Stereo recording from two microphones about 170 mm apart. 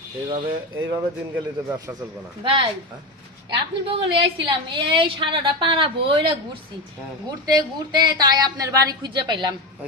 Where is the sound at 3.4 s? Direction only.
30° right (ahead or behind).